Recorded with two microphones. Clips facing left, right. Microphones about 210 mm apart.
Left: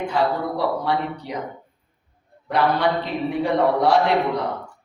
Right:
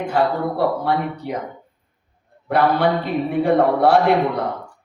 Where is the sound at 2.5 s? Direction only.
55° right (ahead or behind).